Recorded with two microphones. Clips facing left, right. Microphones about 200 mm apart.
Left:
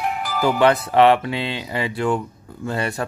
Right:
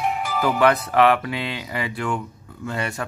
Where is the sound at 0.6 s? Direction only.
25° left (ahead or behind).